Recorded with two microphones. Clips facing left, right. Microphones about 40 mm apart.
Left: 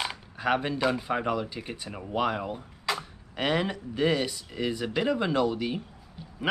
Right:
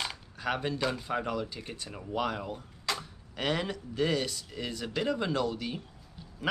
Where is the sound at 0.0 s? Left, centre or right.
Centre.